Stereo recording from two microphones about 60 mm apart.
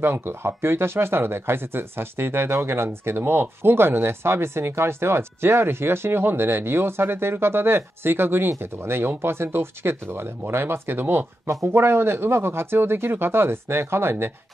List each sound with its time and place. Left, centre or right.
0.0 s speech: right